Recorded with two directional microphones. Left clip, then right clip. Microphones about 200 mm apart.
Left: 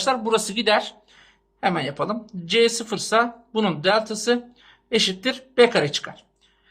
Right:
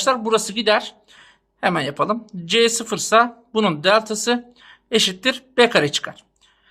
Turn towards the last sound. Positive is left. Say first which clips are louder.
# right 4 dB
turn(degrees=-30)  # may be behind; listen again after turning